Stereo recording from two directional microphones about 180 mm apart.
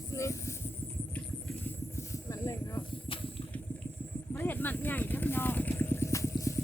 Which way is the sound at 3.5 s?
10° left (ahead or behind).